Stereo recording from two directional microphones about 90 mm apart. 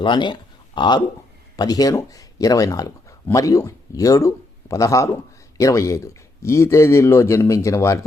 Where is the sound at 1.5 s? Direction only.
45° left (ahead or behind).